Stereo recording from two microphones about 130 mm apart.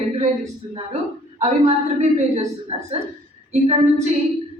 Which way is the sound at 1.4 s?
60° right (ahead or behind).